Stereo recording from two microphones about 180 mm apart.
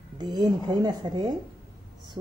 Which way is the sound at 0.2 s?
20° right (ahead or behind).